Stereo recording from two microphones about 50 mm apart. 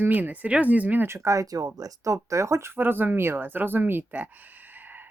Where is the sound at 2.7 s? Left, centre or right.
Right.